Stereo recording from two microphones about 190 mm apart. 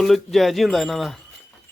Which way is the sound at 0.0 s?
Centre (ahead or behind).